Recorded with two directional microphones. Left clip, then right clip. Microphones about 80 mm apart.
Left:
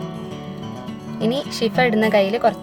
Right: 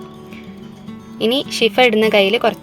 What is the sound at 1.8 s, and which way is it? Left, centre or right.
Speech, right.